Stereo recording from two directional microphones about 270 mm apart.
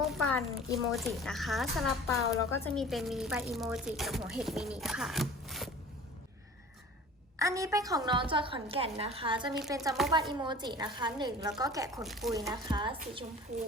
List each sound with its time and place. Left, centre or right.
0.0 s speech: centre
7.3 s a woman's voice: centre
12.0 s speech: centre
12.3 s a woman's voice: centre